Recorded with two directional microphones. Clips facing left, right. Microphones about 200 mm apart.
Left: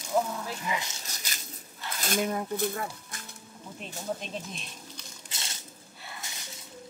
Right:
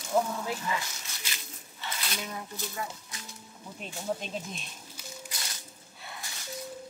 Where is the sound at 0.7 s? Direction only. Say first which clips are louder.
Even; 20° left (ahead or behind).